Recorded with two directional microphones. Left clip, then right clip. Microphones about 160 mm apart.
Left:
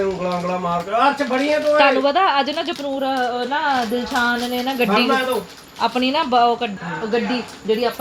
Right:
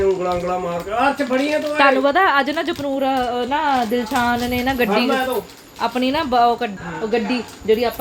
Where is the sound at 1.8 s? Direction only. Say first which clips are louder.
Right 2 dB; 20° right (ahead or behind).